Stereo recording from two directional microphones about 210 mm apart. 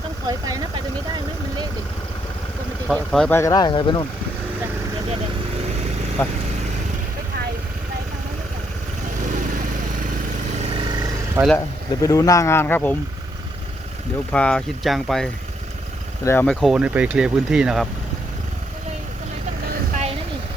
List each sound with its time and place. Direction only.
0.3 s speech: 15° right (ahead or behind)
2.9 s speech: centre (ahead or behind); by 4.0 s 20° left (ahead or behind)
6.2 s speech: 10° left (ahead or behind)
11.4 s speech: 10° right (ahead or behind)
12.0 s speech: 15° left (ahead or behind)
14.3 s speech: 5° left (ahead or behind)